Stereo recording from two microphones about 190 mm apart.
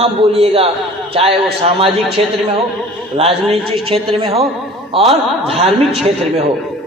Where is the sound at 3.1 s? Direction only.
30° right (ahead or behind).